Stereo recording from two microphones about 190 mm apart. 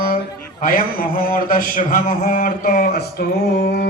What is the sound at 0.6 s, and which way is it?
A man's voice, 50° left (ahead or behind).